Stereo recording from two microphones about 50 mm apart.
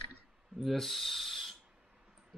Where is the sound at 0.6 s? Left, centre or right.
Centre.